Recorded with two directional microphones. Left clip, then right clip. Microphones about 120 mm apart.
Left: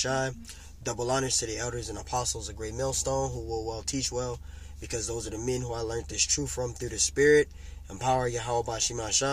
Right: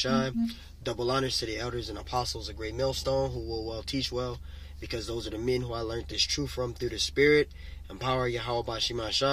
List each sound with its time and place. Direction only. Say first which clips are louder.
0.0 s speech: right 1 dB; 45° left (ahead or behind)